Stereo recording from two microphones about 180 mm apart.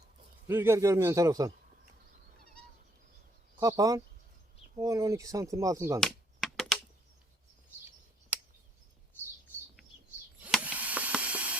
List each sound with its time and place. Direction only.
0.4 s speech: 15° right (ahead or behind)
3.6 s speech: 20° right (ahead or behind)
6.0 s computer keyboard: centre (ahead or behind)
10.4 s a sound: 10° right (ahead or behind)